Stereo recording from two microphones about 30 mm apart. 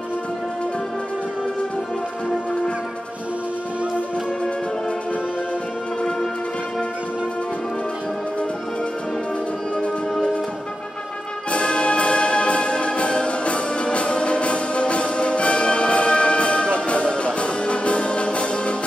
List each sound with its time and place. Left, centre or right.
11.5 s music: left